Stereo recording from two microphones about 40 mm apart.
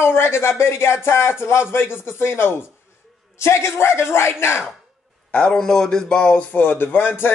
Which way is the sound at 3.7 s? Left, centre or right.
Left.